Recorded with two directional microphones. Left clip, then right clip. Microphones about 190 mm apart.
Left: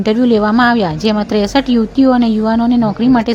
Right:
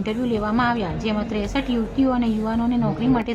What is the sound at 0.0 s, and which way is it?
A woman's voice, 45° left (ahead or behind).